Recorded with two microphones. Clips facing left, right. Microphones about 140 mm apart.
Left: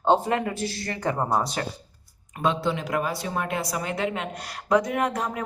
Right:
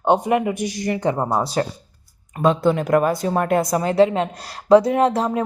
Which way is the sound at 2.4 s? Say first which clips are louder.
Right 7 dB; 45° right (ahead or behind).